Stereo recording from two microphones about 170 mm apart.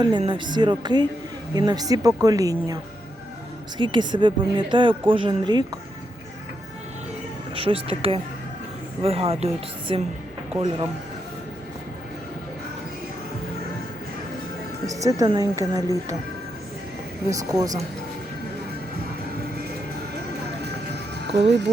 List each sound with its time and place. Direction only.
0.0 s speech: 25° right (ahead or behind)
3.8 s speech: 25° right (ahead or behind)
7.5 s speech: 30° right (ahead or behind)
14.8 s speech: 20° right (ahead or behind)
17.2 s speech: 20° right (ahead or behind)
20.9 s music: 80° right